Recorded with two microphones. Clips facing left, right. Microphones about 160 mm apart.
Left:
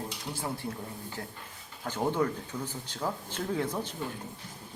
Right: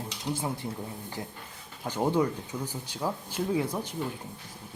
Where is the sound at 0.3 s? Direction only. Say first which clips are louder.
Right 2 dB; 20° right (ahead or behind).